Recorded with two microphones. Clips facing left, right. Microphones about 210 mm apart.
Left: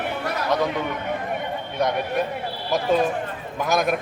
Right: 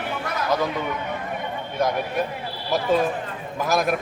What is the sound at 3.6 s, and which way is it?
Speech, centre (ahead or behind).